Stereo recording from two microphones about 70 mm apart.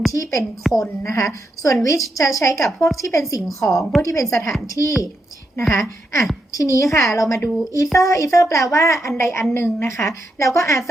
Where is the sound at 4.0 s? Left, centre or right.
Left.